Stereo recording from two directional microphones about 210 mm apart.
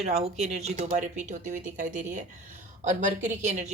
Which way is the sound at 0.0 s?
30° right (ahead or behind).